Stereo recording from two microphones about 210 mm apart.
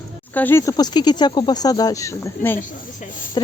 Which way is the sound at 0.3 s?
10° left (ahead or behind).